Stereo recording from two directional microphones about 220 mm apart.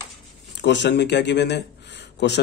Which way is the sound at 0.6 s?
55° left (ahead or behind).